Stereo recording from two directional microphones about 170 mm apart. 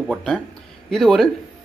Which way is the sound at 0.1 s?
Centre (ahead or behind).